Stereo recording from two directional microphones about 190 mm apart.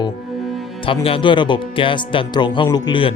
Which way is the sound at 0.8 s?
30° left (ahead or behind).